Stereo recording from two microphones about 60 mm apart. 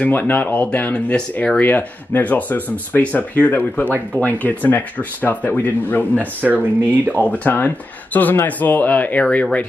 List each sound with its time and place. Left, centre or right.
0.0 s speech: left
1.1 s speech: centre
1.6 s speech: left
6.4 s speech: right
7.2 s speech: left